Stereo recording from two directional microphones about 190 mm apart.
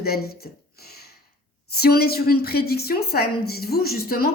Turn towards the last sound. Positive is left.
turn(degrees=50)  # may be behind; listen again after turning